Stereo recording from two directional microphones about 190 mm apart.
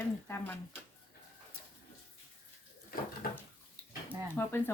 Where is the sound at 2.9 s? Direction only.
50° left (ahead or behind).